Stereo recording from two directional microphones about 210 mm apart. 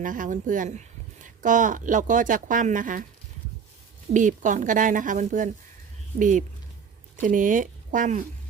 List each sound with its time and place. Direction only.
0.0 s speech: 40° right (ahead or behind)
4.1 s speech: 35° right (ahead or behind)